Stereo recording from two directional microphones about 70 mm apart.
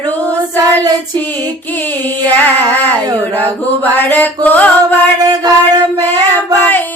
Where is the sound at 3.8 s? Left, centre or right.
Left.